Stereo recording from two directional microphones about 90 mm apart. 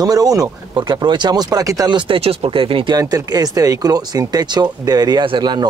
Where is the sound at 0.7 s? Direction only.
55° right (ahead or behind).